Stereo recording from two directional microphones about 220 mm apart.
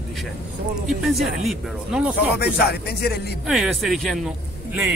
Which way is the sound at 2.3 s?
45° left (ahead or behind).